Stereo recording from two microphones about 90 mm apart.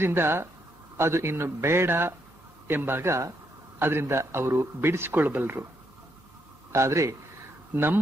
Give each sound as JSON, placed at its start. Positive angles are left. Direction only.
{"t": 0.0, "sound": "a man's voice", "side_deg": -25}
{"t": 6.7, "sound": "speech", "side_deg": -35}
{"t": 7.7, "sound": "speech", "side_deg": -25}